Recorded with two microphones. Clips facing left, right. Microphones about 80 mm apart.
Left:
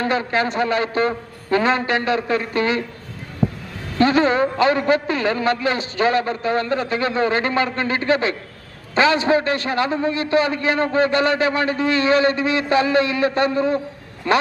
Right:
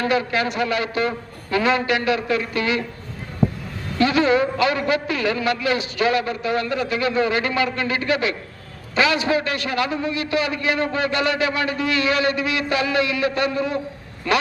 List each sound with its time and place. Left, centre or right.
0.0 s a man's voice: left
3.9 s a man's voice: left